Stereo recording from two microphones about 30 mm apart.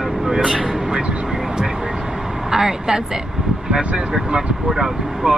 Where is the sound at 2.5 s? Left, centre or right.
Centre.